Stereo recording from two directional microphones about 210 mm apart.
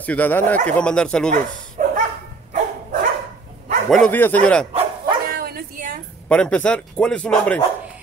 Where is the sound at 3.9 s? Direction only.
5° left (ahead or behind).